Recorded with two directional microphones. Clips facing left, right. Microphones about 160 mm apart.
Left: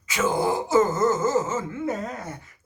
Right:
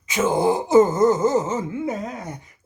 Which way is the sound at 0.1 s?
20° right (ahead or behind).